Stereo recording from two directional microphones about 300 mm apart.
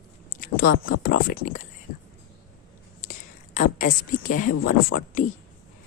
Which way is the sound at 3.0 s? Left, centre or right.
Left.